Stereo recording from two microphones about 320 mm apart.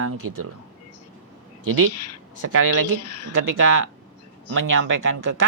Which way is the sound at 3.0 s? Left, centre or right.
Left.